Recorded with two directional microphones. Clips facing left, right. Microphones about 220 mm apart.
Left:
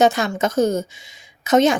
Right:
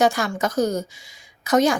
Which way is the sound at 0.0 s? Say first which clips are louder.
Left 3 dB; 20° left (ahead or behind).